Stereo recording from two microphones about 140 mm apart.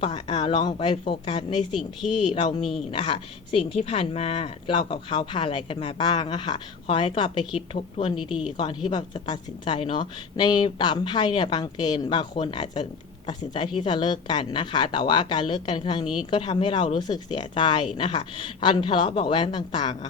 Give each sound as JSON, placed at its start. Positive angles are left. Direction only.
{"t": 0.0, "sound": "a woman's voice", "side_deg": 35}
{"t": 1.7, "sound": "speech", "side_deg": 0}
{"t": 2.3, "sound": "a woman's voice", "side_deg": 40}